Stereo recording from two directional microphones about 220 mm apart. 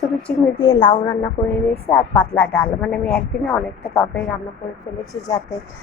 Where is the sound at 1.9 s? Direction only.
5° left (ahead or behind).